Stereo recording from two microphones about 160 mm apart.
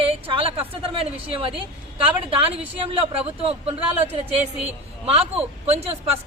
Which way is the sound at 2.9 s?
35° right (ahead or behind).